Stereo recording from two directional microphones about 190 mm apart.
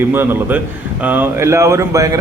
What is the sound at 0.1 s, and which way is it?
A man's voice, 10° right (ahead or behind).